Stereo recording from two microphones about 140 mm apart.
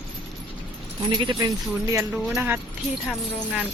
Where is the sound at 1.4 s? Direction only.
20° right (ahead or behind).